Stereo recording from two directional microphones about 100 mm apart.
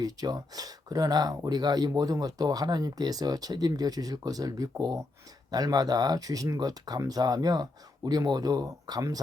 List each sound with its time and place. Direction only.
0.0 s speech: 40° right (ahead or behind)